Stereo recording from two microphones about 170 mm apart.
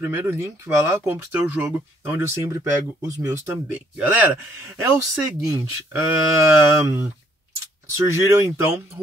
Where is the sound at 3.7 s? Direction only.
10° right (ahead or behind).